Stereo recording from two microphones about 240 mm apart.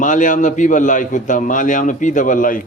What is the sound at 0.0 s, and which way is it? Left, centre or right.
A man's voice, left.